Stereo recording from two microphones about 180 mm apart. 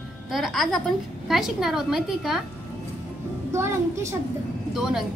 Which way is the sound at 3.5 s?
15° right (ahead or behind).